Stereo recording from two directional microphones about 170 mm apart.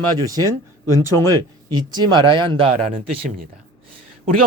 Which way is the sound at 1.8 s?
25° right (ahead or behind).